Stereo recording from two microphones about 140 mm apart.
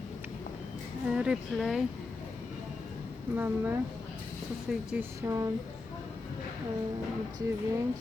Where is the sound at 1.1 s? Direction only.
5° right (ahead or behind).